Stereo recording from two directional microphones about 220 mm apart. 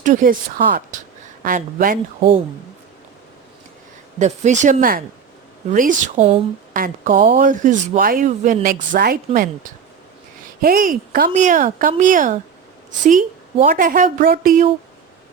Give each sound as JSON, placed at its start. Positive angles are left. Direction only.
{"t": 0.0, "sound": "a woman's voice", "side_deg": -35}
{"t": 4.2, "sound": "speech", "side_deg": -35}
{"t": 10.6, "sound": "speech", "side_deg": -40}